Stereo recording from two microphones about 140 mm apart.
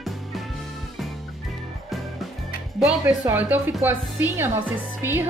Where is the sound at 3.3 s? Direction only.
10° right (ahead or behind).